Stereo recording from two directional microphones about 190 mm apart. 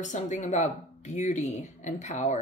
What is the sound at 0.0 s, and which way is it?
Speech, 40° left (ahead or behind).